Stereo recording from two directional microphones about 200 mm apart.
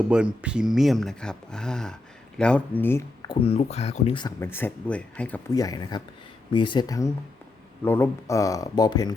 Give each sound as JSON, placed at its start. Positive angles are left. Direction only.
{"t": 0.1, "sound": "speech", "side_deg": -5}
{"t": 3.2, "sound": "speech", "side_deg": 30}
{"t": 4.4, "sound": "speech", "side_deg": 10}
{"t": 5.5, "sound": "speech", "side_deg": 20}